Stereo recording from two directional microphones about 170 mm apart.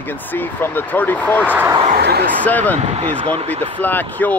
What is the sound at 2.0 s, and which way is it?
Speech, 70° right (ahead or behind).